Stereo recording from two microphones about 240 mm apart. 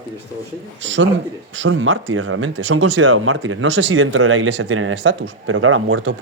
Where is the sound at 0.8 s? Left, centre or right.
Right.